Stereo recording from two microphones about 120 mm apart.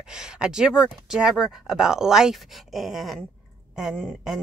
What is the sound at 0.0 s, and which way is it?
A woman's voice, 5° right (ahead or behind).